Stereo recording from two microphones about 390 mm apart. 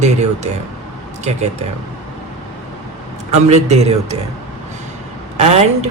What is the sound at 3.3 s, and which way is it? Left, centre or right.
Speech, centre.